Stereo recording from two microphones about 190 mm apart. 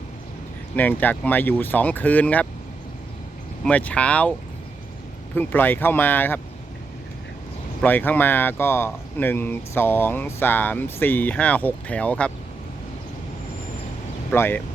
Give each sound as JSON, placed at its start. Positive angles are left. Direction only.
{"t": 0.8, "sound": "speech", "side_deg": 10}
{"t": 3.6, "sound": "speech", "side_deg": 5}
{"t": 7.8, "sound": "speech", "side_deg": 10}
{"t": 14.3, "sound": "speech", "side_deg": 10}